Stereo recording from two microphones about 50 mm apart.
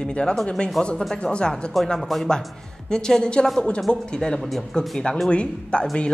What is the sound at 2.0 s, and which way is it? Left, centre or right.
Speech, centre.